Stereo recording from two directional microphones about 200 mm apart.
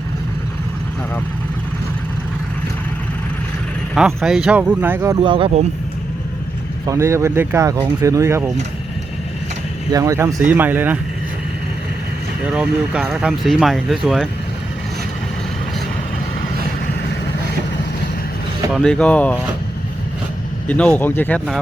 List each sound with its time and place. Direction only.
3.9 s speech: centre (ahead or behind); by 5.6 s 30° right (ahead or behind)
6.8 s speech: 15° right (ahead or behind)
9.9 s speech: 15° right (ahead or behind)
12.5 s speech: 5° right (ahead or behind)
18.7 s speech: 5° left (ahead or behind)
20.7 s speech: 5° left (ahead or behind)